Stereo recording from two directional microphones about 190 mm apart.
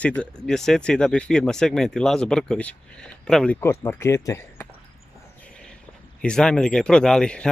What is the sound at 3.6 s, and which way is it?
Speech, 15° left (ahead or behind).